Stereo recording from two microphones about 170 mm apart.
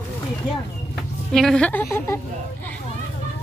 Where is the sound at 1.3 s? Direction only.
5° left (ahead or behind).